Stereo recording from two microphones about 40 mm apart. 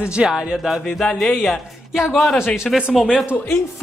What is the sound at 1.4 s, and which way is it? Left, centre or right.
A woman's voice, centre.